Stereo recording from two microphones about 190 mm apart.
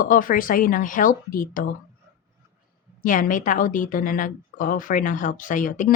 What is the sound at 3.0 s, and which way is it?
Speech, 45° left (ahead or behind).